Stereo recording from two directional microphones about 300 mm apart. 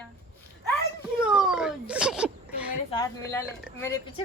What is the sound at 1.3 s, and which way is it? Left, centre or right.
Whimper, centre.